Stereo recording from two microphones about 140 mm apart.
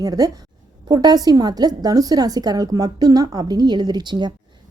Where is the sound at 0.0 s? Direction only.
25° right (ahead or behind).